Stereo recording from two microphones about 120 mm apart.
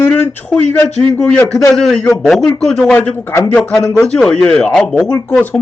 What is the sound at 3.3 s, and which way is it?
Speech, 20° left (ahead or behind).